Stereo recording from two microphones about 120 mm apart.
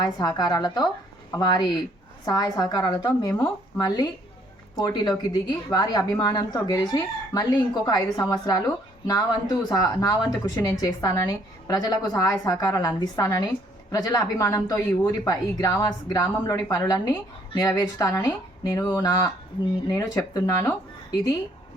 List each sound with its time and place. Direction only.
0.0 s speech: 35° left (ahead or behind)